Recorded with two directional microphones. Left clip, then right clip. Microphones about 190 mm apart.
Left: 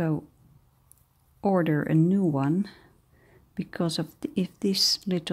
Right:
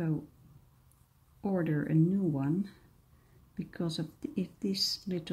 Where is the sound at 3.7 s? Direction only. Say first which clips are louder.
Left 8 dB; 55° left (ahead or behind).